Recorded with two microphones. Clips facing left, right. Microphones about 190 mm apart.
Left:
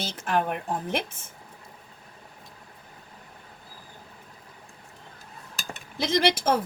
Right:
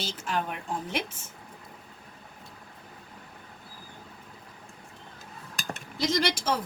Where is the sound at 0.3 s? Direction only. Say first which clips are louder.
Left 6 dB; 55° left (ahead or behind).